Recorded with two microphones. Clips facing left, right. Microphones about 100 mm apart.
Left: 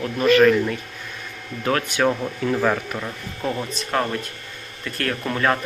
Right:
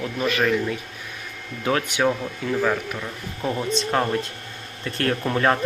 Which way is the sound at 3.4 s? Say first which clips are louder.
Even; 10° right (ahead or behind).